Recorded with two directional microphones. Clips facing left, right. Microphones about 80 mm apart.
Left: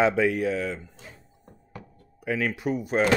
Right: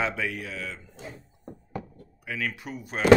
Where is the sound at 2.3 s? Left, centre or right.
Left.